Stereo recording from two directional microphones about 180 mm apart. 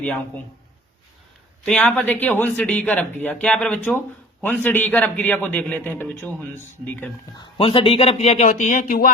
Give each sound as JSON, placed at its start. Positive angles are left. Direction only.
{"t": 0.0, "sound": "a man's voice", "side_deg": 10}
{"t": 1.6, "sound": "a man's voice", "side_deg": 5}
{"t": 7.3, "sound": "speech", "side_deg": 30}